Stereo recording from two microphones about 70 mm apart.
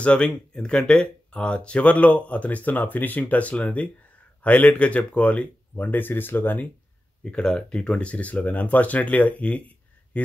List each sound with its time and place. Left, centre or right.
0.0 s speech: centre
7.2 s speech: centre